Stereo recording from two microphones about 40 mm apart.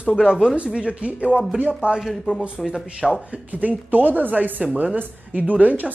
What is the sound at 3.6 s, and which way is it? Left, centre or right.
Speech, right.